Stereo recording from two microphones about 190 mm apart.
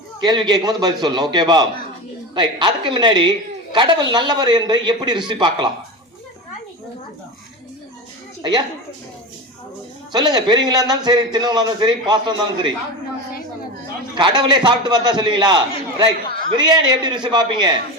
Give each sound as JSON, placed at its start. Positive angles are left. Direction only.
{"t": 0.2, "sound": "a woman's voice", "side_deg": -20}
{"t": 8.4, "sound": "speech", "side_deg": -20}
{"t": 10.1, "sound": "a woman's voice", "side_deg": -20}
{"t": 14.2, "sound": "a woman's voice", "side_deg": -25}